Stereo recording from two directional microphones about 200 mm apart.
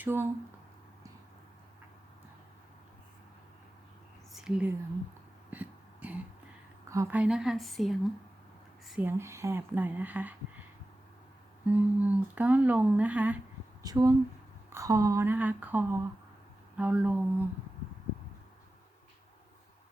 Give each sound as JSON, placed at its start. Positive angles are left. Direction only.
{"t": 0.0, "sound": "speech", "side_deg": -10}
{"t": 4.4, "sound": "whispering", "side_deg": -5}
{"t": 5.5, "sound": "a sound", "side_deg": -10}
{"t": 6.9, "sound": "speech", "side_deg": -10}
{"t": 11.6, "sound": "speech", "side_deg": -10}